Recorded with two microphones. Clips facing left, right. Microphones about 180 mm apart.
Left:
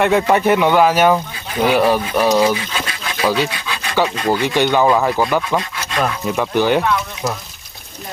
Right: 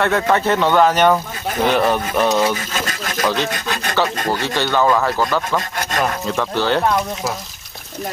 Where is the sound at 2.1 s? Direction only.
Centre (ahead or behind).